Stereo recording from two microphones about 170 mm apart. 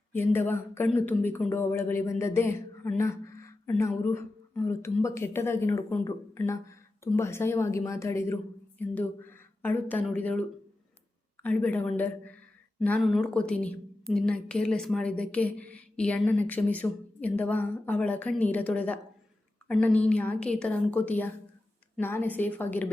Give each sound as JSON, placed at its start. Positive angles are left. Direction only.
{"t": 0.1, "sound": "a woman's voice", "side_deg": 15}
{"t": 11.4, "sound": "a woman's voice", "side_deg": 10}